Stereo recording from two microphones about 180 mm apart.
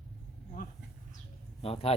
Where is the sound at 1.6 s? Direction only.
35° left (ahead or behind).